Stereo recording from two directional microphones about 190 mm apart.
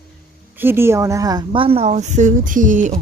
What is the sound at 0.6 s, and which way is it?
Speech, 10° right (ahead or behind).